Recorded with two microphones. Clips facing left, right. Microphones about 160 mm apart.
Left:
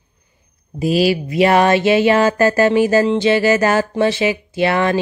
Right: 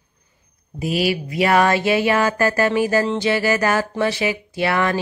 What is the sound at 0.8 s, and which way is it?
Speech, 30° left (ahead or behind).